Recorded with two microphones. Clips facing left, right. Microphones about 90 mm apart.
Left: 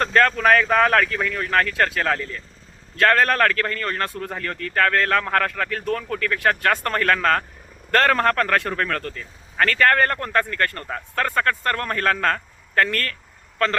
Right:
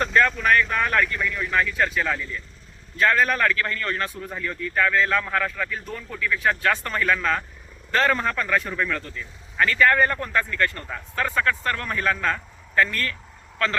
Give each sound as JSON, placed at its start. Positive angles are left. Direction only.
{"t": 0.0, "sound": "a sound", "side_deg": 55}
{"t": 0.4, "sound": "speech", "side_deg": 90}
{"t": 1.4, "sound": "a man's voice", "side_deg": 60}